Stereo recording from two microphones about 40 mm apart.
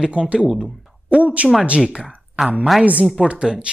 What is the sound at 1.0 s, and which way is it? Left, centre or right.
Speech, right.